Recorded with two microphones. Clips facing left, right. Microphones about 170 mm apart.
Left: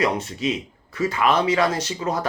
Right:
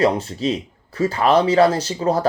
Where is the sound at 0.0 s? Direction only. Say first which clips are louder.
Right 4 dB; 30° right (ahead or behind).